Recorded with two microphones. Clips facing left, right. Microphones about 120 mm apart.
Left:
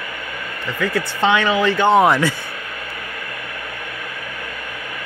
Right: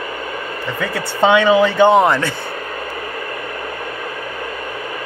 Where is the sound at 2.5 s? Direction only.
35° right (ahead or behind).